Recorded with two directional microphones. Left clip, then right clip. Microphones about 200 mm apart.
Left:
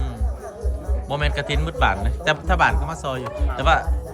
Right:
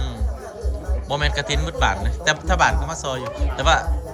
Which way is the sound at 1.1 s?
5° left (ahead or behind).